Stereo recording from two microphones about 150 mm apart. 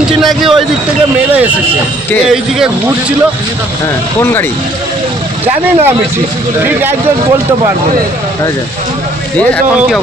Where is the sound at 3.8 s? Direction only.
15° left (ahead or behind).